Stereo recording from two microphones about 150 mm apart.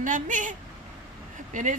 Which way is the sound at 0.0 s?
60° right (ahead or behind).